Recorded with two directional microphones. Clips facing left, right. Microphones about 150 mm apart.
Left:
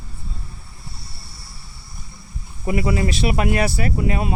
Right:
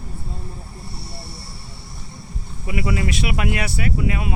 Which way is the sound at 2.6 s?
35° left (ahead or behind).